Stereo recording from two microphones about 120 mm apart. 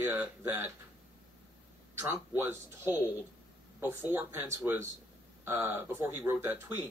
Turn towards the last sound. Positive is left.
turn(degrees=-20)  # may be behind; listen again after turning